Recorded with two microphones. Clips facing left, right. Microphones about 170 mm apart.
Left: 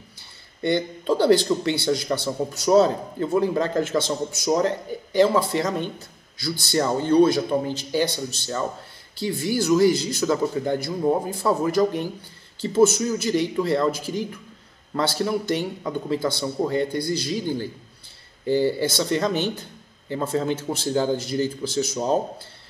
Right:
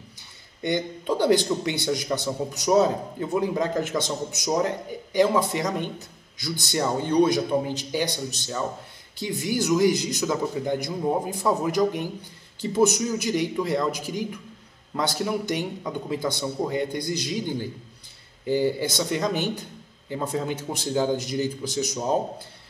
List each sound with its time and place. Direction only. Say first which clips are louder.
0.6 s a man's voice: left 3 dB; 15° right (ahead or behind)